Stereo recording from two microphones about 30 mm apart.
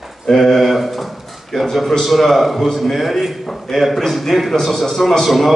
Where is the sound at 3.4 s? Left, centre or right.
Centre.